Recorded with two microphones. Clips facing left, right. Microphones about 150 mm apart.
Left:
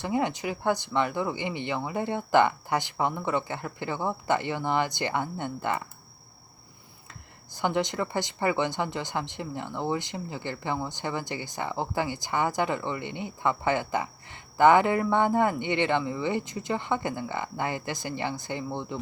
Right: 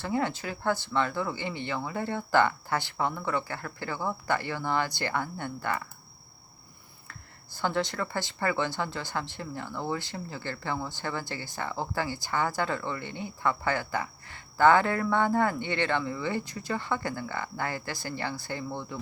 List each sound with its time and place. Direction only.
0.0 s speech: 20° left (ahead or behind)
7.1 s speech: 15° left (ahead or behind)